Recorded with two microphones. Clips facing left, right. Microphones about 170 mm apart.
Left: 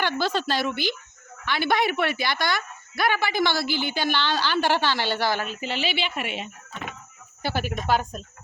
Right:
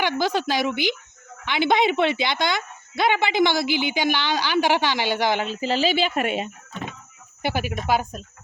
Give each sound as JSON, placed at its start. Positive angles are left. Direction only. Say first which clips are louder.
{"t": 0.0, "sound": "speech", "louder": "right 2 dB", "side_deg": -15}
{"t": 5.5, "sound": "speech", "louder": "right 7 dB", "side_deg": -40}
{"t": 7.4, "sound": "speech", "louder": "right 2 dB", "side_deg": -10}